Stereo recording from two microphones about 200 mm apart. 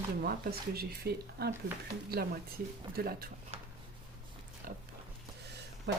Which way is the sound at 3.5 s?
35° right (ahead or behind).